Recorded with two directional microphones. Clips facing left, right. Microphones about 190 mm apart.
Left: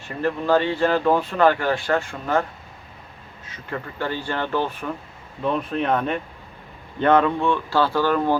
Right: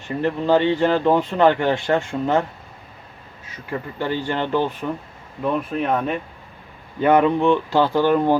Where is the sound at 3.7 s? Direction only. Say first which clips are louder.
Right 3 dB; 15° right (ahead or behind).